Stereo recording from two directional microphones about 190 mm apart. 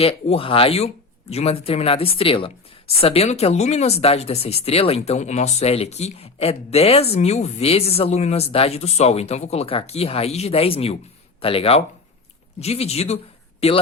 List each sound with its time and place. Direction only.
0.0 s speech: 30° left (ahead or behind)